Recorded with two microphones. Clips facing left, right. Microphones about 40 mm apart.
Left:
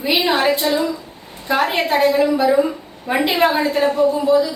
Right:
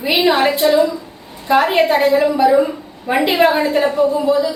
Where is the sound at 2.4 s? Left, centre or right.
Centre.